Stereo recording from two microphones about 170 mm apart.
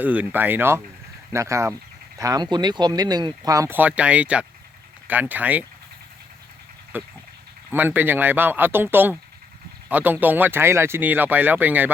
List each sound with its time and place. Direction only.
0.0 s speech: 10° right (ahead or behind)
6.9 s speech: 10° right (ahead or behind)